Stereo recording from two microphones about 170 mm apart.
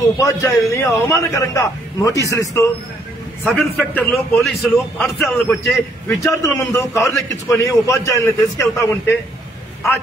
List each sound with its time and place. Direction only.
0.2 s a man's voice: 15° left (ahead or behind)
3.4 s a man's voice: 5° left (ahead or behind)
6.0 s a man's voice: 15° left (ahead or behind)